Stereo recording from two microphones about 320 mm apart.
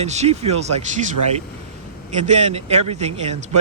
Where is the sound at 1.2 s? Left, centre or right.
Right.